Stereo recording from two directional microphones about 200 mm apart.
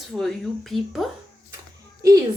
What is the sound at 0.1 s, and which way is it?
Speech, centre (ahead or behind).